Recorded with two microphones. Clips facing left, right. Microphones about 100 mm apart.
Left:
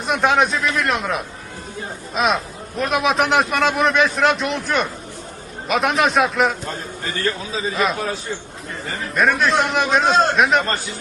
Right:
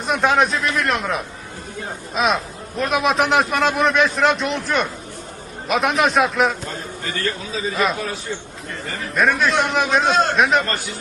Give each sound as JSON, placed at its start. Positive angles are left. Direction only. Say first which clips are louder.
{"t": 0.0, "sound": "a man's voice", "louder": "even", "side_deg": 0}
{"t": 7.7, "sound": "a man's voice", "louder": "even", "side_deg": 0}
{"t": 9.1, "sound": "a man's voice", "louder": "left 1 dB", "side_deg": 0}
{"t": 10.1, "sound": "a man's voice", "louder": "left 3 dB", "side_deg": 30}
{"t": 10.3, "sound": "a man's voice", "louder": "even", "side_deg": 0}